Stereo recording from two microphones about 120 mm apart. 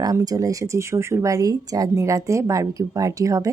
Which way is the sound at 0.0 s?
30° right (ahead or behind).